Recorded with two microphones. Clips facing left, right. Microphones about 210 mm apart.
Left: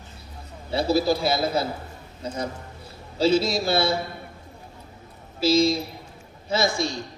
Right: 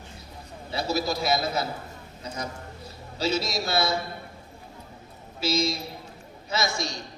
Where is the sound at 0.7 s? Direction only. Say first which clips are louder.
Left 6 dB; 30° left (ahead or behind).